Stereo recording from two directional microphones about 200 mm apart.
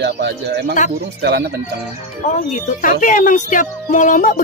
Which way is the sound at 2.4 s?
40° left (ahead or behind).